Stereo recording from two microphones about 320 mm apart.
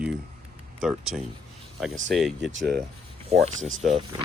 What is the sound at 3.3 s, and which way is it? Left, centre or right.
Speech, centre.